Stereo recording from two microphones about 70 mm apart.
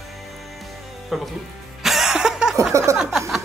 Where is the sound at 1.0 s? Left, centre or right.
Centre.